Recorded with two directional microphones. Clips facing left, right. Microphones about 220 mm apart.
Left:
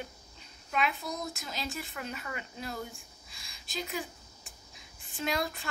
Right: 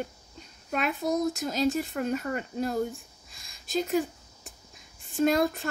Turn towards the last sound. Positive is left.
turn(degrees=-45)  # may be behind; listen again after turning